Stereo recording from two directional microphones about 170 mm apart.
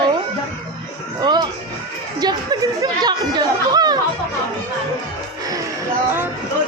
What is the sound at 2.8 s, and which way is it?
Speech, 25° right (ahead or behind).